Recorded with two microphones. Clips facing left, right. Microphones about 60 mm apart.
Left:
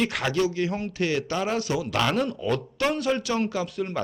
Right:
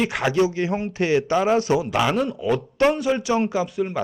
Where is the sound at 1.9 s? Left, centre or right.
Centre.